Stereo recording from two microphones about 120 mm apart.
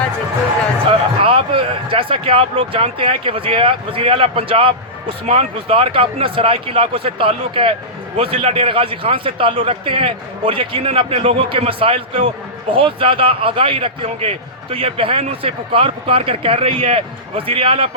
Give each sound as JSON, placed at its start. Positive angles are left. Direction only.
{"t": 0.9, "sound": "speech", "side_deg": -50}